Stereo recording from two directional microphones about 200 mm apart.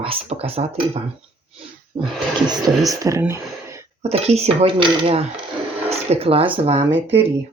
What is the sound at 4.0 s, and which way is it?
Speech, 30° right (ahead or behind).